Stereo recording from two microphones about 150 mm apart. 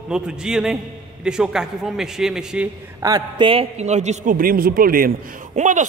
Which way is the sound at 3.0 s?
30° right (ahead or behind).